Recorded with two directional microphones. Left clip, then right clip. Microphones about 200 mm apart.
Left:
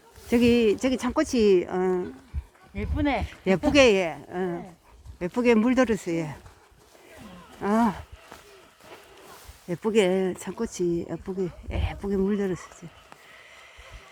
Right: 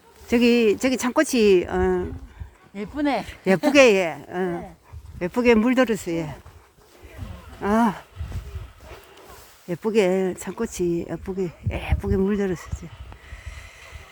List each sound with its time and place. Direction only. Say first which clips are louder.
0.3 s speech: right 3 dB; 5° right (ahead or behind)
3.7 s speech: right 4 dB; 10° right (ahead or behind)
7.6 s speech: right 3 dB; 10° right (ahead or behind)
9.6 s speech: right 2 dB; 5° right (ahead or behind)